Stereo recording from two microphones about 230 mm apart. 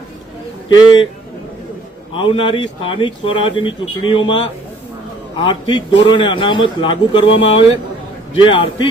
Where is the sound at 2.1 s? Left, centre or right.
Left.